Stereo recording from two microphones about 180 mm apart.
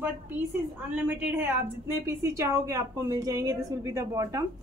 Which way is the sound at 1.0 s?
10° right (ahead or behind).